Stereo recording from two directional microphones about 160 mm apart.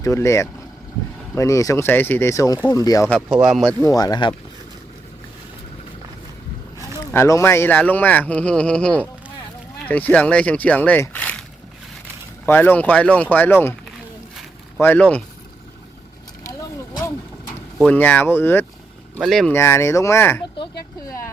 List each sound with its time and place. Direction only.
0.0 s speech: 20° left (ahead or behind)
3.1 s speech: centre (ahead or behind)
3.8 s speech: 20° left (ahead or behind)
7.1 s speech: 15° left (ahead or behind)
12.5 s speech: 10° left (ahead or behind)
14.8 s speech: 10° left (ahead or behind)
16.4 s vehicle: 20° left (ahead or behind)
17.7 s speech: 10° left (ahead or behind)
19.1 s speech: centre (ahead or behind)
19.5 s speech: 15° left (ahead or behind)
20.6 s a sound: 25° left (ahead or behind)